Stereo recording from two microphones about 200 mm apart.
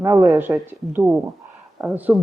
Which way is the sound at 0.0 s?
15° right (ahead or behind).